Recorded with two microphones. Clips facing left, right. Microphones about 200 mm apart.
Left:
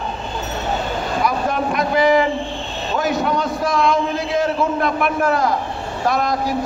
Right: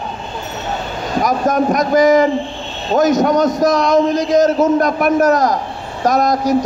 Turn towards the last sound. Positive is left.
turn(degrees=-40)  # may be behind; listen again after turning